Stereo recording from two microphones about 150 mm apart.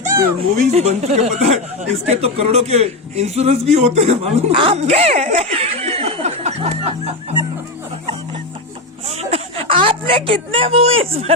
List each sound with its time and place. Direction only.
0.5 s speech: 50° right (ahead or behind)
9.0 s whimper: 45° right (ahead or behind)